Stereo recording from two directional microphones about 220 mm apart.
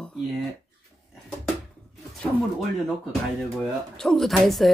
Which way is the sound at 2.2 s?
Centre (ahead or behind).